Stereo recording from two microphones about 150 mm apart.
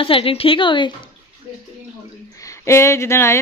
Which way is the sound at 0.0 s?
40° left (ahead or behind).